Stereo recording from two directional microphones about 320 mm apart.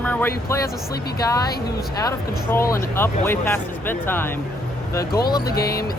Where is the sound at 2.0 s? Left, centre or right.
Centre.